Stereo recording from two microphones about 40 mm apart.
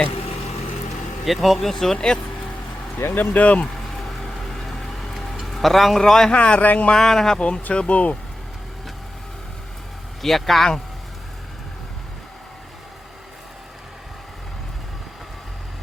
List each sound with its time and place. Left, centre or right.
1.2 s speech: centre
3.0 s speech: left
3.3 s speech: left
4.3 s a sound: centre
6.0 s speech: centre
6.3 s speech: left
6.6 s speech: left
6.9 s speech: centre
7.7 s speech: left
10.2 s speech: centre